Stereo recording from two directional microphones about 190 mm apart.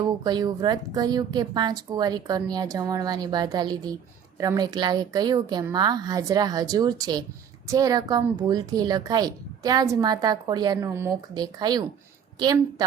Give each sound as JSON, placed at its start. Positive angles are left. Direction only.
{"t": 0.0, "sound": "a woman's voice", "side_deg": -20}